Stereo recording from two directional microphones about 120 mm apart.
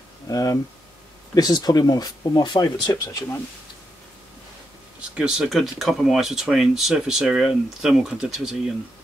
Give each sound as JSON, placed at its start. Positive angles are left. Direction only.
{"t": 0.3, "sound": "speech", "side_deg": 30}
{"t": 5.1, "sound": "speech", "side_deg": -5}